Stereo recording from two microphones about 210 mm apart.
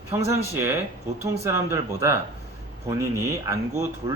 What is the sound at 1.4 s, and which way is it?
Speech, 15° right (ahead or behind).